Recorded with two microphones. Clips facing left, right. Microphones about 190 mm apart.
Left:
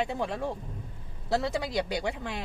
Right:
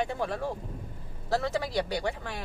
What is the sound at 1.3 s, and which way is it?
Speech, 15° left (ahead or behind).